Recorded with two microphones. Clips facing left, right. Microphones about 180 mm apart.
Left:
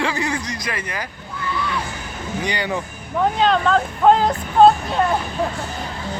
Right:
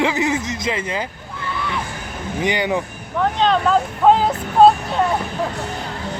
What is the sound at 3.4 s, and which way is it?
Speech, centre (ahead or behind).